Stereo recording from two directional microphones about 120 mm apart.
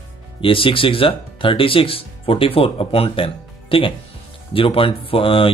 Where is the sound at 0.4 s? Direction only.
45° left (ahead or behind).